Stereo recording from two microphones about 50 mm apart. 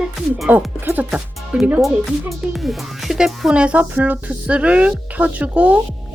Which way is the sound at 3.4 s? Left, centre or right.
Right.